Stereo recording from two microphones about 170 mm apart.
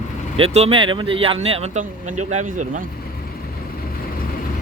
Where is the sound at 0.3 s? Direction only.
35° right (ahead or behind).